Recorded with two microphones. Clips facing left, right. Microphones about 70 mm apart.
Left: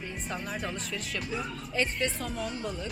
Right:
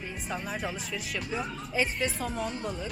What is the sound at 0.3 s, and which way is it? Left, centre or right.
Speech, centre.